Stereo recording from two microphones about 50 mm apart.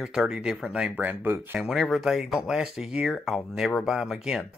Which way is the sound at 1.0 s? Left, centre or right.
Right.